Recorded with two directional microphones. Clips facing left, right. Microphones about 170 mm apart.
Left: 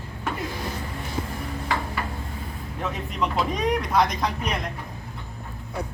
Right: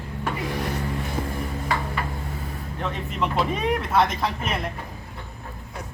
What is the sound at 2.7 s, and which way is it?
Speech, centre (ahead or behind).